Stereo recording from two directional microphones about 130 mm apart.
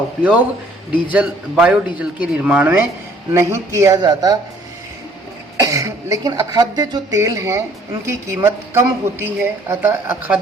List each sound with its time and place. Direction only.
0.2 s a woman's voice: 10° right (ahead or behind); by 4.4 s 30° right (ahead or behind)
5.5 s a woman's voice: 25° right (ahead or behind)